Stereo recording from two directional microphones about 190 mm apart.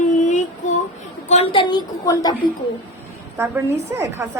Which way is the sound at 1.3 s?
35° left (ahead or behind).